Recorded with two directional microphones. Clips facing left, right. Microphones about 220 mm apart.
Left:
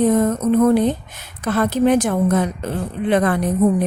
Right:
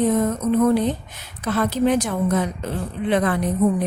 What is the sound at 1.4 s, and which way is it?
A woman's voice, 50° left (ahead or behind).